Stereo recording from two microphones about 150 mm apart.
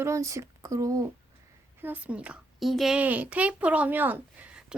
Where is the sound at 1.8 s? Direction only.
10° right (ahead or behind).